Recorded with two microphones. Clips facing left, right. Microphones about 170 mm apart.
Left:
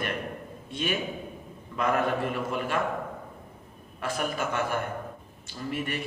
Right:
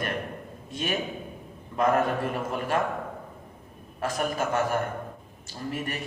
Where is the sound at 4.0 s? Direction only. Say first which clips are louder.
Right 2 dB; 45° right (ahead or behind).